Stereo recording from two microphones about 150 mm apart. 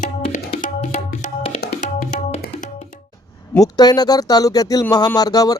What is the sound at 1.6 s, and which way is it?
Tabla, 85° left.